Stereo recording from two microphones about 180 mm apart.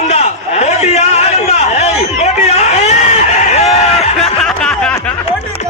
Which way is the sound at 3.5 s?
35° left (ahead or behind).